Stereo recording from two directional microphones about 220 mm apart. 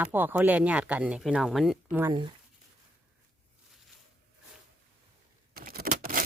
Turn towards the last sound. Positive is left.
turn(degrees=-40)  # may be behind; listen again after turning